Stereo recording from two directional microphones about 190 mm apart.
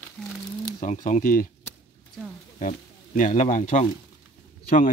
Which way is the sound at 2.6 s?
45° left (ahead or behind).